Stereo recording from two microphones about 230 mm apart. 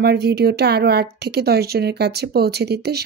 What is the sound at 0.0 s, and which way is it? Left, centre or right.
Speech, right.